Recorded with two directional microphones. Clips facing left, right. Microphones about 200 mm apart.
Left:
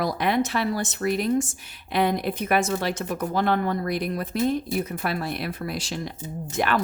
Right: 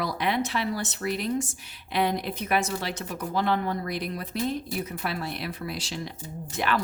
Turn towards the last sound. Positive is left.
turn(degrees=45)  # may be behind; listen again after turning